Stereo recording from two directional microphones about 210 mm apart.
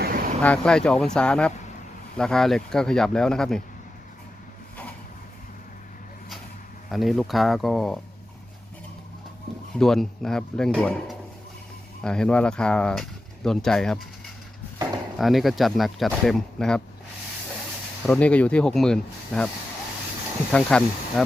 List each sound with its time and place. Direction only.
0.0 s vehicle: 40° right (ahead or behind)
0.4 s speech: 5° left (ahead or behind)
6.9 s speech: centre (ahead or behind)
9.7 s speech: centre (ahead or behind)
15.2 s speech: centre (ahead or behind)
18.0 s speech: 5° left (ahead or behind)
20.5 s speech: 5° left (ahead or behind)